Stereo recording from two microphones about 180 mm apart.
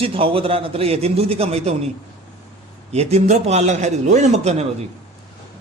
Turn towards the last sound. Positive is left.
turn(degrees=-35)  # may be behind; listen again after turning